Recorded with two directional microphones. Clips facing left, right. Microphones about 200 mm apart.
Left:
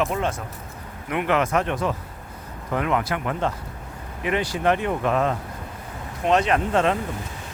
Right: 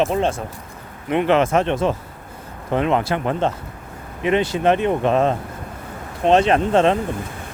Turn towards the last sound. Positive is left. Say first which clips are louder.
# right 5 dB
turn(degrees=-25)  # may be behind; listen again after turning